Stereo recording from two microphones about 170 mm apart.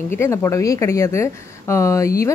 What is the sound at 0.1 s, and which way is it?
Speech, 15° left (ahead or behind).